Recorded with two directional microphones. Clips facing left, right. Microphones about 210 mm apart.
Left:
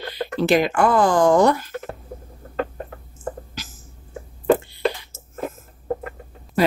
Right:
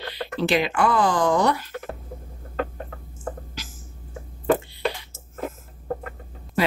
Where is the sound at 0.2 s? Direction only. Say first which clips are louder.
Left 4 dB; 45° left (ahead or behind).